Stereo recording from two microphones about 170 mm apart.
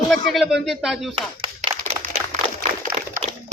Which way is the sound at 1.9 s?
70° right (ahead or behind).